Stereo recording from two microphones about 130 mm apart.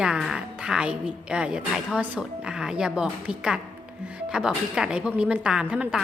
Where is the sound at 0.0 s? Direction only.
5° right (ahead or behind).